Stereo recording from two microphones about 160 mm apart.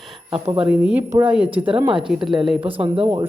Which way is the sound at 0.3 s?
35° right (ahead or behind).